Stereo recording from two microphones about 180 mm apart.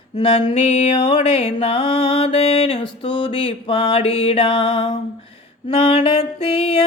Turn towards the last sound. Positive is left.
turn(degrees=30)  # may be behind; listen again after turning